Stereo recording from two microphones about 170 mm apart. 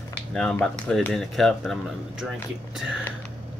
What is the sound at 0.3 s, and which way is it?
Speech, 5° left (ahead or behind).